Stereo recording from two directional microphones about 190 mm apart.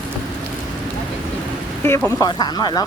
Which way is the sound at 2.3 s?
20° left (ahead or behind).